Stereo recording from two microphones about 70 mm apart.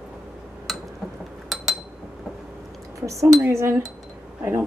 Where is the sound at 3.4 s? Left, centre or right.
Right.